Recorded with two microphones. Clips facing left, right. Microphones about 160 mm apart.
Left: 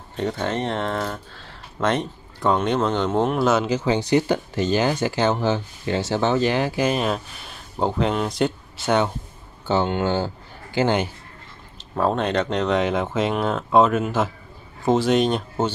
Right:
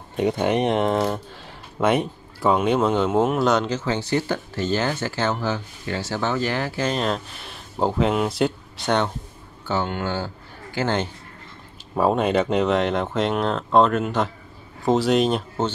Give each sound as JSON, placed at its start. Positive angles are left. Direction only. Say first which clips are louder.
{"t": 0.1, "sound": "speech", "louder": "right 4 dB", "side_deg": -15}
{"t": 9.7, "sound": "a man's voice", "louder": "left 4 dB", "side_deg": 25}
{"t": 11.9, "sound": "speech", "louder": "right 2 dB", "side_deg": -10}